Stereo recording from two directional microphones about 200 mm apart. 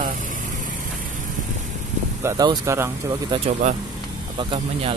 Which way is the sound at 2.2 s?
15° right (ahead or behind).